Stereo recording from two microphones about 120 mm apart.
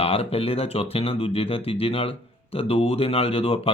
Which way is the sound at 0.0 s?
55° left (ahead or behind).